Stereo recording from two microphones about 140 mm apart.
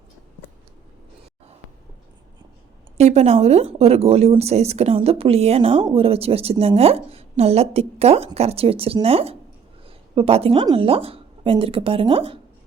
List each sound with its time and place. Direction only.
3.0 s a woman's voice: 50° right (ahead or behind)
9.8 s a sound: 40° right (ahead or behind)
10.8 s a woman's voice: 40° right (ahead or behind)